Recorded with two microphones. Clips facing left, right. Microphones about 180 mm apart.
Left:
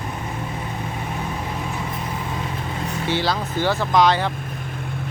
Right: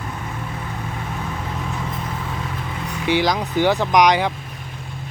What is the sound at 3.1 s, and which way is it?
Speech, 15° right (ahead or behind).